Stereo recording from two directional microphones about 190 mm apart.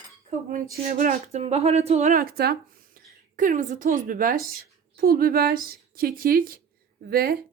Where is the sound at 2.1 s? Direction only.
50° right (ahead or behind).